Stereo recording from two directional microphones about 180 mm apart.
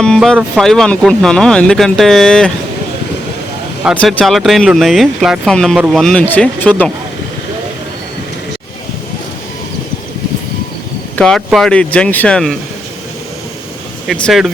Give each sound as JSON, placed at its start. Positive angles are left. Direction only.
{"t": 0.0, "sound": "speech", "side_deg": 5}
{"t": 4.0, "sound": "speech", "side_deg": 0}
{"t": 11.2, "sound": "speech", "side_deg": 0}
{"t": 14.1, "sound": "speech", "side_deg": 0}